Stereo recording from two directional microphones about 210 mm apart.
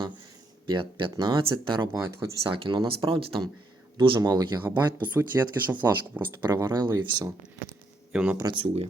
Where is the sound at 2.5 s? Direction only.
25° right (ahead or behind).